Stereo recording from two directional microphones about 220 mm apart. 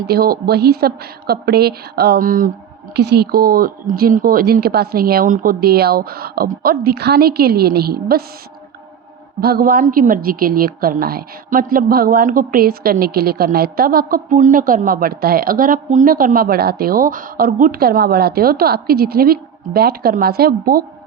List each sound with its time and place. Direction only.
0.1 s a woman's voice: 45° right (ahead or behind)
9.4 s a woman's voice: 45° right (ahead or behind)